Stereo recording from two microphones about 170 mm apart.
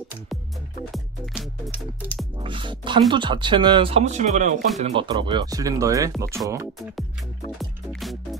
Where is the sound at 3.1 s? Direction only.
25° right (ahead or behind); by 4.5 s 45° right (ahead or behind).